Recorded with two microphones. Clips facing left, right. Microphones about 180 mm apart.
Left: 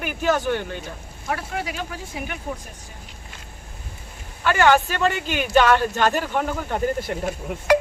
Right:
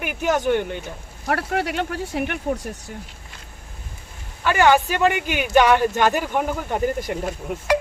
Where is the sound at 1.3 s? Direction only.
65° right (ahead or behind).